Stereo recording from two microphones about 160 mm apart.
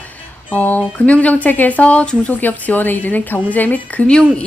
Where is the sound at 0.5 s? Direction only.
10° left (ahead or behind).